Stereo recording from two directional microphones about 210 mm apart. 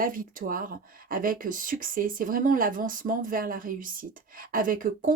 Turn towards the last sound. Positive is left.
turn(degrees=-40)  # may be behind; listen again after turning